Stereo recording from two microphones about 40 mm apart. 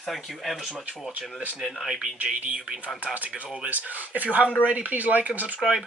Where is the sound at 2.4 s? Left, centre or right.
Right.